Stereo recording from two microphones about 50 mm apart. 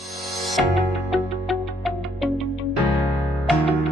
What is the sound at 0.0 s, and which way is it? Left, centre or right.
Music, centre.